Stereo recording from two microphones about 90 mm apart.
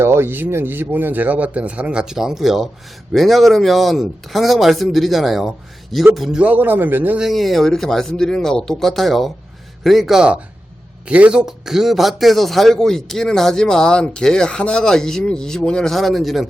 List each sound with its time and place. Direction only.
0.0 s a man's voice: 25° right (ahead or behind); by 6.4 s centre (ahead or behind)
6.4 s a man's voice: 20° right (ahead or behind)
7.2 s a man's voice: centre (ahead or behind)